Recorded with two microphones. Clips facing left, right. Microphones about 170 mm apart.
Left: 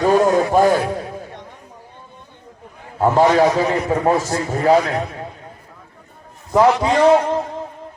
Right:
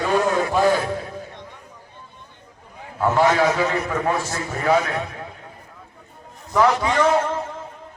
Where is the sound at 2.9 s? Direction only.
35° left (ahead or behind).